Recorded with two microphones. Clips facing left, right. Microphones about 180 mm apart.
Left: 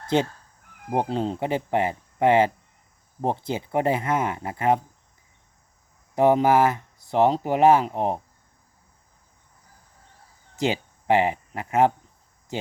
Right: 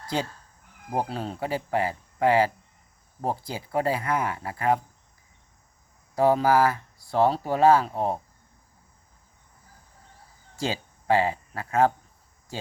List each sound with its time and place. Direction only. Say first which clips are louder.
0.1 s speech: left 7 dB; 25° left (ahead or behind)
6.1 s speech: left 2 dB; 20° left (ahead or behind)
10.6 s speech: left 5 dB; 20° left (ahead or behind)